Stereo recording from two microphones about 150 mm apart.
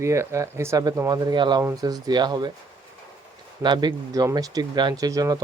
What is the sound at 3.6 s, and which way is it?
Speech, 30° right (ahead or behind).